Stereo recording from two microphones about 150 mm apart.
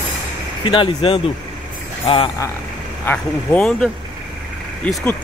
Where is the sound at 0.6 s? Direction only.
35° left (ahead or behind).